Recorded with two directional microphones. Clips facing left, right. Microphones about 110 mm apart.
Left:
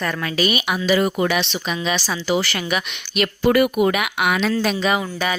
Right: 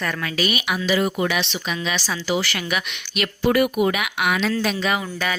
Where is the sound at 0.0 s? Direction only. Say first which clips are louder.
Left 3 dB; 30° left (ahead or behind).